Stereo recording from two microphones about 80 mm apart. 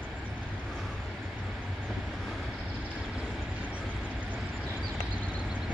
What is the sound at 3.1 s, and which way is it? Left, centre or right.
Vehicle, centre.